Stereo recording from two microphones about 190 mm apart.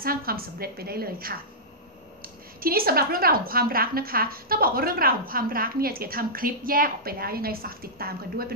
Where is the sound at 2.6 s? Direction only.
50° right (ahead or behind).